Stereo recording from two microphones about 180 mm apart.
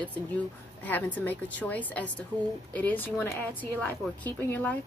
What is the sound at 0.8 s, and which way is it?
Speech, 10° left (ahead or behind).